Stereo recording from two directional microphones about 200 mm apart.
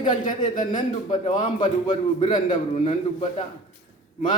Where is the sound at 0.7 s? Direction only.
20° left (ahead or behind).